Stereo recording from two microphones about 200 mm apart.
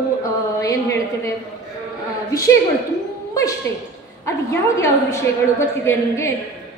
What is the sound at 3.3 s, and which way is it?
A woman's voice, 15° left (ahead or behind).